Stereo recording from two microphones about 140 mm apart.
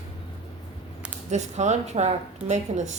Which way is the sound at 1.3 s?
55° right (ahead or behind).